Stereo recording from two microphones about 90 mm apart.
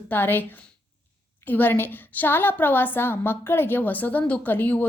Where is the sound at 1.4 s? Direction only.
20° left (ahead or behind).